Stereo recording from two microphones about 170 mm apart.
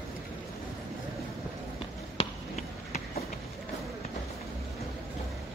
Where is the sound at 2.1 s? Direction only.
40° left (ahead or behind).